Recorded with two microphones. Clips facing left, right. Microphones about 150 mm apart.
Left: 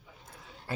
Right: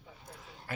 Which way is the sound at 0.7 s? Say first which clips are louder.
Left 4 dB; 30° left (ahead or behind).